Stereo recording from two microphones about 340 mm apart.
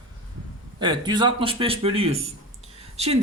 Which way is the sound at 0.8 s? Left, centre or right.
Centre.